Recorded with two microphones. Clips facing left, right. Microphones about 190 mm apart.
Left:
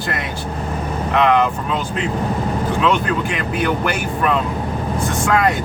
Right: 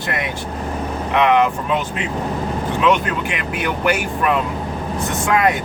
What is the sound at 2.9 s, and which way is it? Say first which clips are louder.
Speech: left 1 dB; 15° right (ahead or behind).